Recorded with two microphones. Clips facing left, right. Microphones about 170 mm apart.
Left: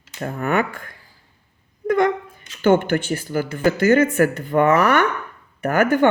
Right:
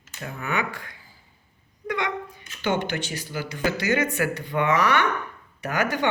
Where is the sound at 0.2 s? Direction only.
50° left (ahead or behind).